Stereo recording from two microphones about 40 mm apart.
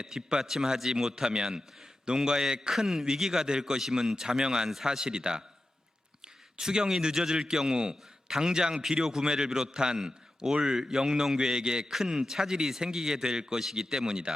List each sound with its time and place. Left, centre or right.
0.0 s a man's voice: centre
3.4 s a man's voice: centre